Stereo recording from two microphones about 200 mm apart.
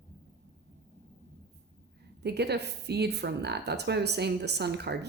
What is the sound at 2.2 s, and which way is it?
A woman's voice, 55° right (ahead or behind).